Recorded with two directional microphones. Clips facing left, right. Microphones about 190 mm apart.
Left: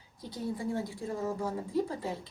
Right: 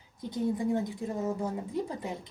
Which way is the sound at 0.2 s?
20° right (ahead or behind).